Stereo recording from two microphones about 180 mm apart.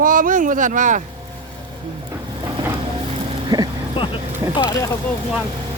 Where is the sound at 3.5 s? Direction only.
25° right (ahead or behind).